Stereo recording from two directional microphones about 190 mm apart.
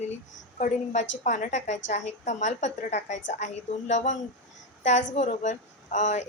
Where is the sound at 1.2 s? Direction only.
40° left (ahead or behind).